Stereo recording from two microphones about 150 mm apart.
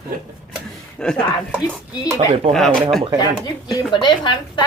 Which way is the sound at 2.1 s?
40° right (ahead or behind).